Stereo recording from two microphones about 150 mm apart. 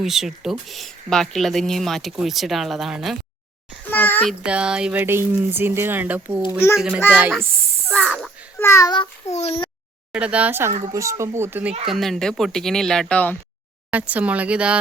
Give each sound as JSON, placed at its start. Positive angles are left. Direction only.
{"t": 0.0, "sound": "speech", "side_deg": 0}
{"t": 3.9, "sound": "a sound", "side_deg": 10}
{"t": 4.3, "sound": "speech", "side_deg": -5}
{"t": 7.9, "sound": "speech", "side_deg": 5}
{"t": 8.5, "sound": "a child's voice", "side_deg": 20}
{"t": 9.3, "sound": "a child's voice", "side_deg": 45}
{"t": 10.1, "sound": "speech", "side_deg": -10}
{"t": 10.7, "sound": "speech", "side_deg": -55}
{"t": 10.9, "sound": "speech", "side_deg": -20}
{"t": 11.9, "sound": "speech", "side_deg": 0}
{"t": 13.9, "sound": "speech", "side_deg": -10}